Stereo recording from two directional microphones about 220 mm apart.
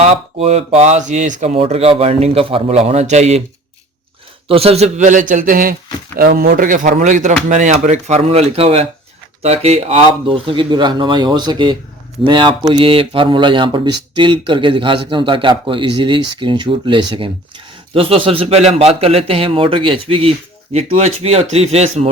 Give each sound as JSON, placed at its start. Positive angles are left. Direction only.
{"t": 0.0, "sound": "speech", "side_deg": -30}
{"t": 4.4, "sound": "a man's voice", "side_deg": -25}